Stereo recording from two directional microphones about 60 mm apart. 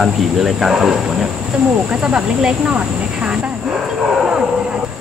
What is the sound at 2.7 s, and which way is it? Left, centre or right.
Vehicle, right.